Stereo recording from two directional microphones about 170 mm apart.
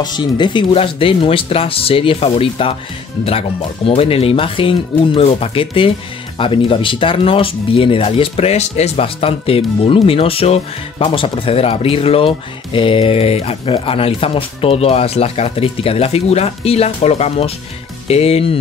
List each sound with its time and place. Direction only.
0.0 s speech: 25° left (ahead or behind)